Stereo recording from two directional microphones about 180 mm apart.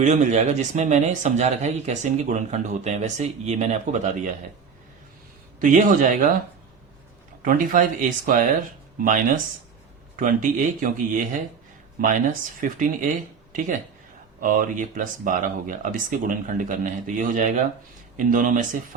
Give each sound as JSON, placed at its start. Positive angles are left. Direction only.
{"t": 0.0, "sound": "speech", "side_deg": -40}
{"t": 5.5, "sound": "speech", "side_deg": -50}
{"t": 7.4, "sound": "speech", "side_deg": -50}